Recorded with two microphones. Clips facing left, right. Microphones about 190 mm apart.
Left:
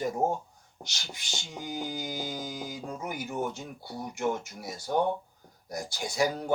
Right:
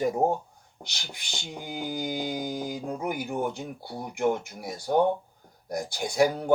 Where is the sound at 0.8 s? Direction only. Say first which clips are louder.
Right 1 dB; 60° right (ahead or behind).